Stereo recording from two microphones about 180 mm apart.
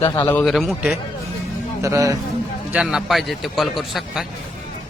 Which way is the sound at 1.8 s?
15° right (ahead or behind).